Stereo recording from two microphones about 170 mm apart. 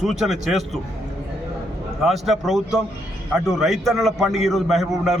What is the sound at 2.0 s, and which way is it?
A man's voice, centre (ahead or behind).